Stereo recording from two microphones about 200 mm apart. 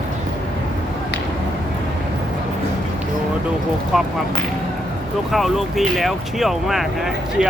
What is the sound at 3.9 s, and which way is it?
Speech, centre (ahead or behind).